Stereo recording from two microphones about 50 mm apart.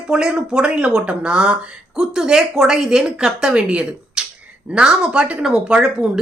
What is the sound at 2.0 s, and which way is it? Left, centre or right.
Speech, centre.